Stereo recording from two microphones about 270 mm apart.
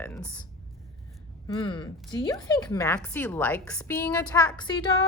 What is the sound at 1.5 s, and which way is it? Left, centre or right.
Speech, centre.